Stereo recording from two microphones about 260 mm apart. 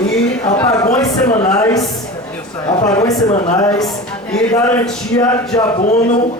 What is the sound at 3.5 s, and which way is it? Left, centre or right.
Speech, centre.